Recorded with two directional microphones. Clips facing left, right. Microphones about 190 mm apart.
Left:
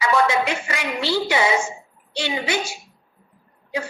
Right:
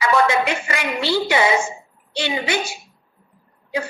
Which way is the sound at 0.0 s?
60° right (ahead or behind).